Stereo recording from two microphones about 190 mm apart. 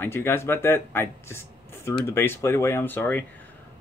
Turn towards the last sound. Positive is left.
turn(degrees=10)  # may be behind; listen again after turning